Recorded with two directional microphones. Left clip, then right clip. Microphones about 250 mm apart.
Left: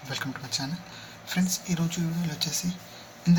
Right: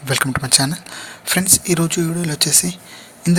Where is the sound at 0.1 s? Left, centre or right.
Right.